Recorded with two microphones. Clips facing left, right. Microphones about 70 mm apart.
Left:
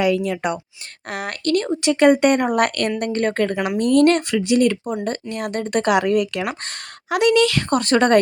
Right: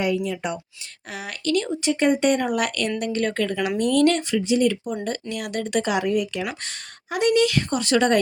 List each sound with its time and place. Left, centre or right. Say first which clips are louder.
0.0 s a woman's voice: left 5 dB; left
1.8 s speech: left 7 dB; left
2.5 s a woman's voice: left 5 dB; left
4.4 s speech: left 3 dB; left
5.3 s speech: left 2 dB; left
5.8 s a woman's voice: left 8 dB; left
7.7 s a woman's voice: left 4 dB; left